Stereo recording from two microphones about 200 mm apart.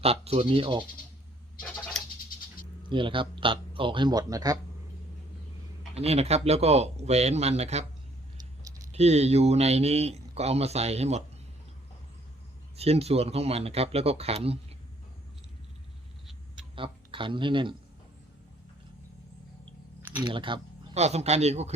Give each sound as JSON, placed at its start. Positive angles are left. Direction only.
{"t": 0.0, "sound": "speech", "side_deg": -30}
{"t": 2.9, "sound": "speech", "side_deg": -25}
{"t": 5.9, "sound": "speech", "side_deg": -30}
{"t": 8.4, "sound": "clicking", "side_deg": -15}
{"t": 8.9, "sound": "speech", "side_deg": -35}
{"t": 12.7, "sound": "speech", "side_deg": -30}
{"t": 16.7, "sound": "speech", "side_deg": -25}
{"t": 20.0, "sound": "typing", "side_deg": -10}
{"t": 20.2, "sound": "speech", "side_deg": -25}